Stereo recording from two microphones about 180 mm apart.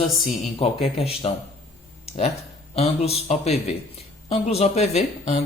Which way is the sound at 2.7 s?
35° left (ahead or behind).